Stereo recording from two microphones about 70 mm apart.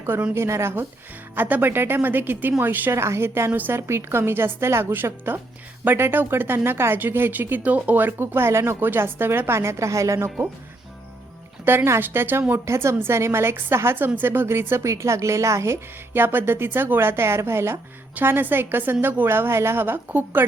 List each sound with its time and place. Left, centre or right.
0.3 s speech: right
11.6 s speech: right